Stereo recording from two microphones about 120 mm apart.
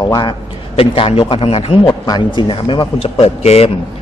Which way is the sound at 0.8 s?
55° left (ahead or behind).